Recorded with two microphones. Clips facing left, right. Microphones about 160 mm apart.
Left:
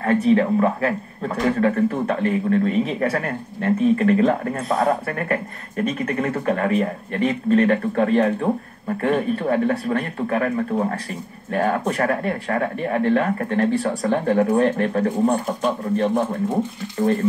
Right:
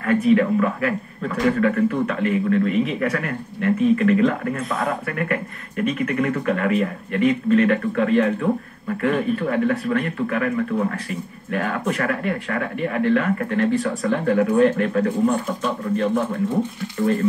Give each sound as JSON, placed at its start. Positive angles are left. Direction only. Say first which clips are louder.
{"t": 0.0, "sound": "speech", "louder": "even", "side_deg": 35}